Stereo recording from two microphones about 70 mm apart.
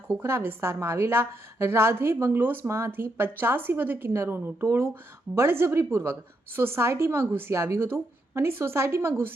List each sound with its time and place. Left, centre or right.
0.2 s a woman's voice: right